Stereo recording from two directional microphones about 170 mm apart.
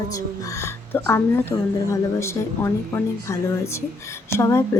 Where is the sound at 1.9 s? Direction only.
15° left (ahead or behind).